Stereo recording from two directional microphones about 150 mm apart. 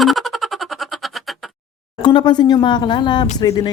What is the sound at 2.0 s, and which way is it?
Speech, 30° left (ahead or behind).